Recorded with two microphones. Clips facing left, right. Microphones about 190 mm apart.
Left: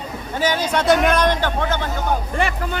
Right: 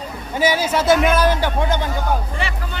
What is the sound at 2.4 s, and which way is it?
Speech, 50° left (ahead or behind).